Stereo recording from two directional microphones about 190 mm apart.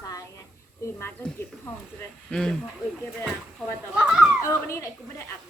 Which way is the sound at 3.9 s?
5° right (ahead or behind).